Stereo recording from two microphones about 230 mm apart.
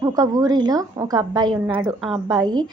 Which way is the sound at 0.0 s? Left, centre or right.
Centre.